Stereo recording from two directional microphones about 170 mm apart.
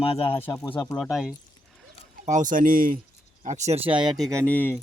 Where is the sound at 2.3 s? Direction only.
50° right (ahead or behind).